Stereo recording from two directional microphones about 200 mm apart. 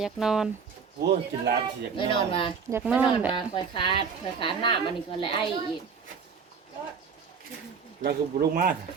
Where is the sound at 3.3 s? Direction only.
25° left (ahead or behind).